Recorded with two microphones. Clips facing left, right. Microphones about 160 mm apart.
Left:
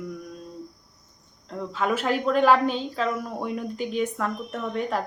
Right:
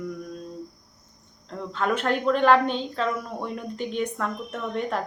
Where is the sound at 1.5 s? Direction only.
5° left (ahead or behind).